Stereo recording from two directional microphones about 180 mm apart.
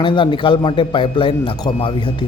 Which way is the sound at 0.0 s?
25° left (ahead or behind).